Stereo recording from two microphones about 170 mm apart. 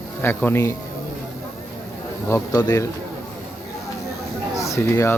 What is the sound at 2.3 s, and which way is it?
Speech, 20° left (ahead or behind).